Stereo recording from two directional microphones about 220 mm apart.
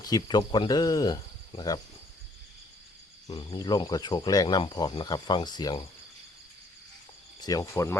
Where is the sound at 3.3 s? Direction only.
20° left (ahead or behind).